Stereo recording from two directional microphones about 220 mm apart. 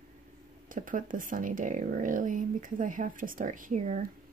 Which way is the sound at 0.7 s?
35° right (ahead or behind).